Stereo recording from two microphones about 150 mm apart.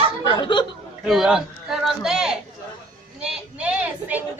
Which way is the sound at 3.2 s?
5° right (ahead or behind).